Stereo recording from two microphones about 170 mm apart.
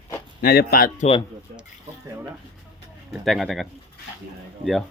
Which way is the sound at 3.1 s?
Centre (ahead or behind).